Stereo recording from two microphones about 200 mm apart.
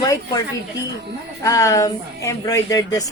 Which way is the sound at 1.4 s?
15° left (ahead or behind).